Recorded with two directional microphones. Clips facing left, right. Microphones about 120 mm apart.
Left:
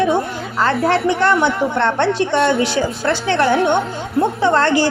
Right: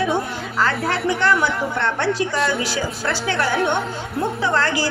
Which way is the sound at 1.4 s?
Centre (ahead or behind).